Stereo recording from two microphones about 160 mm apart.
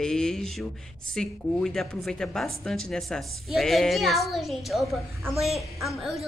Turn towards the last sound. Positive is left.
turn(degrees=0)  # may be behind; listen again after turning